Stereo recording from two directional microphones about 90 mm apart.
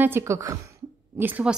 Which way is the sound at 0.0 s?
25° right (ahead or behind).